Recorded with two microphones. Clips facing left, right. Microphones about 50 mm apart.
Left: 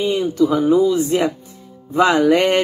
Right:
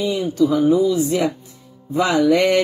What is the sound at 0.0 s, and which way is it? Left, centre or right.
Speech, left.